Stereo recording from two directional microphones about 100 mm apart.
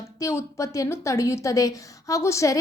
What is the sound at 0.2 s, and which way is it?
A woman's voice, 30° left (ahead or behind).